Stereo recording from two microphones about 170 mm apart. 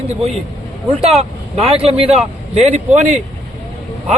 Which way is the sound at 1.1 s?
35° right (ahead or behind).